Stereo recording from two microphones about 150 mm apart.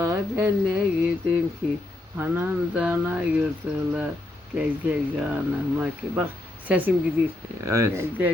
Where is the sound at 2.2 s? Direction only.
15° right (ahead or behind).